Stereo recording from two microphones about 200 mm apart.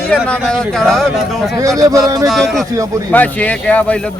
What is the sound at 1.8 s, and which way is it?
Speech, 15° right (ahead or behind).